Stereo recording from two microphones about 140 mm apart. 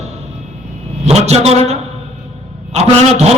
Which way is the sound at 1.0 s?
50° right (ahead or behind).